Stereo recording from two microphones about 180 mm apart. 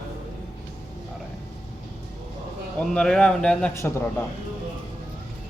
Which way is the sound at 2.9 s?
5° left (ahead or behind).